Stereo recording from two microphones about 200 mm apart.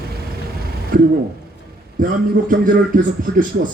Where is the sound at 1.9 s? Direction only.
45° right (ahead or behind).